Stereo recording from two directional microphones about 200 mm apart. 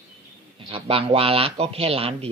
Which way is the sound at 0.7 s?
30° right (ahead or behind).